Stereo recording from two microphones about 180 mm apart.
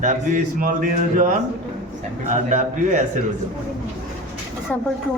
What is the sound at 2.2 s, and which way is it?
Speech, 45° right (ahead or behind).